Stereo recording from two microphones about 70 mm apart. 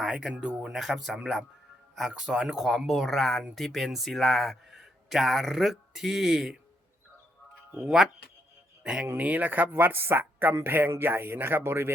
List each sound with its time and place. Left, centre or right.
0.0 s a man's voice: centre
2.6 s a man's voice: centre
8.8 s speech: centre; by 11.9 s right